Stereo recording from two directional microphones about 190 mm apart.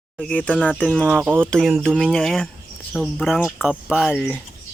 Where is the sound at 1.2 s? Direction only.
10° right (ahead or behind).